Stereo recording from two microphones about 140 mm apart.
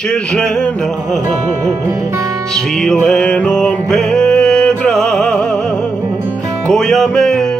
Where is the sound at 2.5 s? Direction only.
5° left (ahead or behind).